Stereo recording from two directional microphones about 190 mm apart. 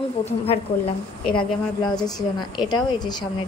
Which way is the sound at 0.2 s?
30° left (ahead or behind).